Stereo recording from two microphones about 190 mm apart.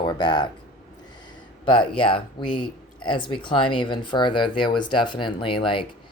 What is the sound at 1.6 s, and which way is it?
Speech, 25° left (ahead or behind).